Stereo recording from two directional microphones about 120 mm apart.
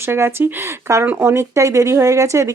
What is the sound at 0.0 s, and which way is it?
Speech, 20° right (ahead or behind).